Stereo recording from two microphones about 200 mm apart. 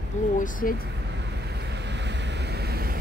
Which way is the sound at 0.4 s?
45° left (ahead or behind).